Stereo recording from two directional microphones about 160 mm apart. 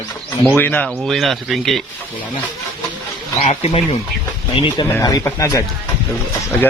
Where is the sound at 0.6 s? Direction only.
10° left (ahead or behind).